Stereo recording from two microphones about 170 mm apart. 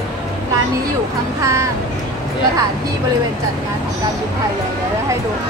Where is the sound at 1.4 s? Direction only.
20° right (ahead or behind).